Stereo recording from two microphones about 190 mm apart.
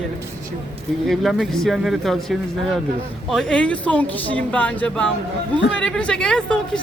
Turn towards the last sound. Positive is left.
turn(degrees=5)  # may be behind; listen again after turning